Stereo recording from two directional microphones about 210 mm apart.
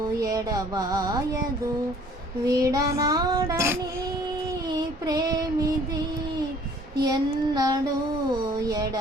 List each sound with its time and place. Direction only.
0.2 s child singing: 15° right (ahead or behind)
2.4 s child singing: 15° right (ahead or behind)
7.0 s child singing: 20° right (ahead or behind)
8.5 s speech: 15° right (ahead or behind)